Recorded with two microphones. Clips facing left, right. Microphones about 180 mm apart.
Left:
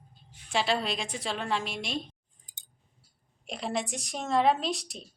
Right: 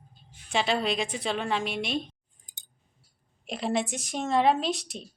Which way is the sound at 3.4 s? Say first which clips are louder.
Right 4 dB; centre (ahead or behind).